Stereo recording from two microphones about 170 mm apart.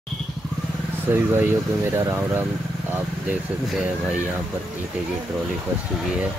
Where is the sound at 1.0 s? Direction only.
10° right (ahead or behind).